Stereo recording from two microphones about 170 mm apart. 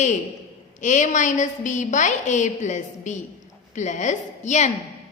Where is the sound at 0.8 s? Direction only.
45° left (ahead or behind).